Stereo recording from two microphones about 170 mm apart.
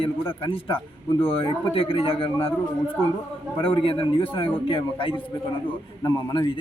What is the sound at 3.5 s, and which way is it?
A man's voice, 30° left (ahead or behind).